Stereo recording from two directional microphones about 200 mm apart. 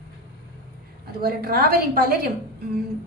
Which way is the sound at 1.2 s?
50° right (ahead or behind).